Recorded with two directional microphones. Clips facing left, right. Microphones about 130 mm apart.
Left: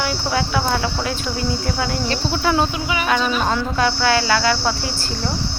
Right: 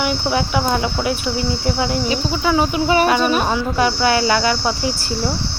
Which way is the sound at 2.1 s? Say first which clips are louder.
Right 1 dB; 5° right (ahead or behind).